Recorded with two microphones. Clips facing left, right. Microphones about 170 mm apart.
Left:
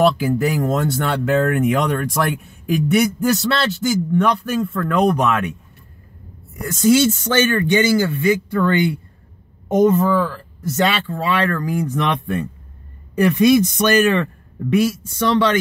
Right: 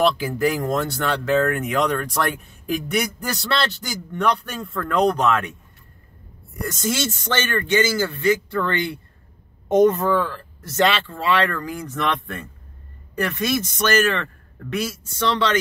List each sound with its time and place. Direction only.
0.0 s speech: centre (ahead or behind)
6.7 s speech: centre (ahead or behind)
9.8 s speech: centre (ahead or behind)